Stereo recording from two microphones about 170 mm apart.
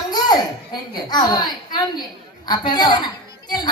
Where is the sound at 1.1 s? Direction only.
25° left (ahead or behind).